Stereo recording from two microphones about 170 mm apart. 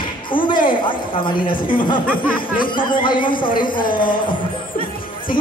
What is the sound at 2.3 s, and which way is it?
Speech, 55° left (ahead or behind).